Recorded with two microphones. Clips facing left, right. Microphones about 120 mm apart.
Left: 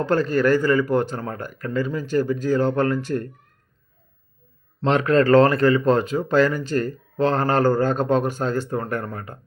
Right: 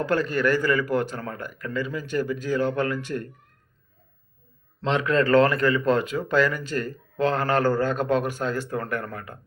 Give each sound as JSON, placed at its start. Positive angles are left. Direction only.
{"t": 0.0, "sound": "speech", "side_deg": 30}
{"t": 4.8, "sound": "speech", "side_deg": 40}